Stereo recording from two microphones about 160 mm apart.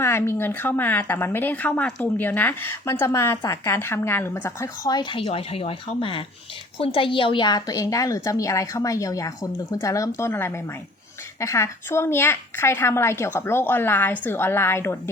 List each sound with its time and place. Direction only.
0.0 s a woman's voice: 15° left (ahead or behind)